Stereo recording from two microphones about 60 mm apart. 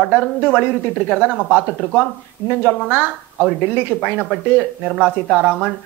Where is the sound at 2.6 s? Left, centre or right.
Centre.